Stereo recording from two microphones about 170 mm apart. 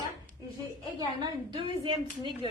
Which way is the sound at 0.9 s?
25° right (ahead or behind).